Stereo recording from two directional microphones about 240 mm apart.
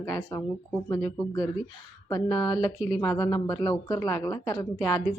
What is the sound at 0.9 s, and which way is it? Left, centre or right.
Speech, centre.